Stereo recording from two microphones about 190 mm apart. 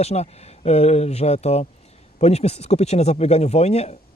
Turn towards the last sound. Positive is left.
turn(degrees=35)  # may be behind; listen again after turning